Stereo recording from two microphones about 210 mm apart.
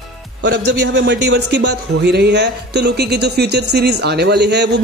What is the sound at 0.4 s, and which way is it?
A man's voice, 55° right (ahead or behind).